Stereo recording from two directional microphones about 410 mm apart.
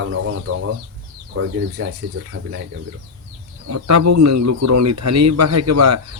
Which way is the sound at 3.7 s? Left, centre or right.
Right.